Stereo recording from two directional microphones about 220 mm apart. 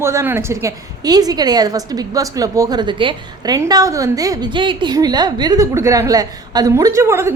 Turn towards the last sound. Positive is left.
turn(degrees=-10)  # may be behind; listen again after turning